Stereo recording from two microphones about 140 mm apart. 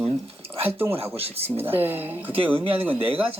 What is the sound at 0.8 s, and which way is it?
Speech, 15° right (ahead or behind).